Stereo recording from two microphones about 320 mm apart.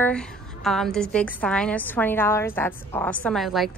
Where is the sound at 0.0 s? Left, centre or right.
Centre.